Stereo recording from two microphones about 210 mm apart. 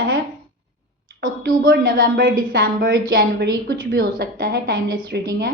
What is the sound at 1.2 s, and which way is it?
A woman's voice, 40° right (ahead or behind).